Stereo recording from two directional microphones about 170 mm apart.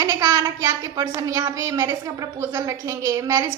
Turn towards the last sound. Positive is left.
turn(degrees=-15)  # may be behind; listen again after turning